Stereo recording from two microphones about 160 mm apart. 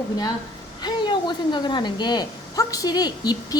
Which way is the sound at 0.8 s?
25° left (ahead or behind).